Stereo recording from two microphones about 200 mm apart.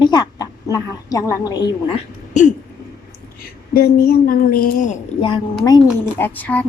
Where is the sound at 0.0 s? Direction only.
20° left (ahead or behind).